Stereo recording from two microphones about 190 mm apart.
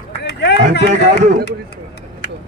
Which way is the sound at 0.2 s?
65° left (ahead or behind).